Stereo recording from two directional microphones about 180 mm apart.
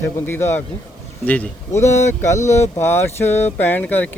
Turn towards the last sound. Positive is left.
turn(degrees=10)  # may be behind; listen again after turning